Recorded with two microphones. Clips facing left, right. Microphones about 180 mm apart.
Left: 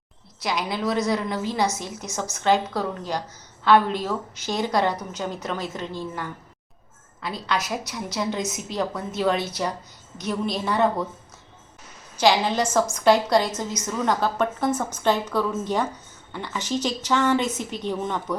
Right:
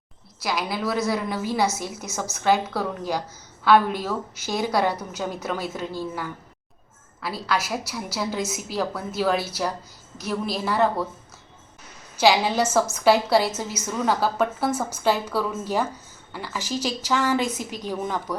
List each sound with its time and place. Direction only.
0.4 s a woman's voice: 5° right (ahead or behind)
2.0 s a woman's voice: 15° left (ahead or behind)
2.4 s a woman's voice: 10° right (ahead or behind)
12.2 s a woman's voice: 5° right (ahead or behind)